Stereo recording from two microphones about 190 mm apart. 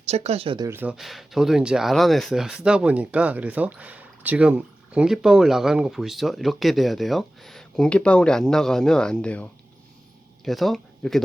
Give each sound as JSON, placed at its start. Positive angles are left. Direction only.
{"t": 0.1, "sound": "speech", "side_deg": -35}
{"t": 0.7, "sound": "speech", "side_deg": -10}